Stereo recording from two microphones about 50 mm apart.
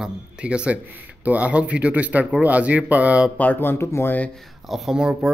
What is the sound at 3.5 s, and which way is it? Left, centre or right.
Speech, left.